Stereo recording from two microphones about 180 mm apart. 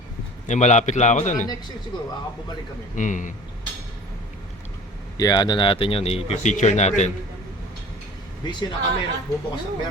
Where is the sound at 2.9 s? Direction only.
45° left (ahead or behind).